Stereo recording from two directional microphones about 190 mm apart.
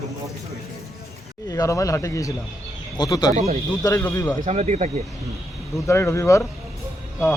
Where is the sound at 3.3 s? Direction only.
40° right (ahead or behind).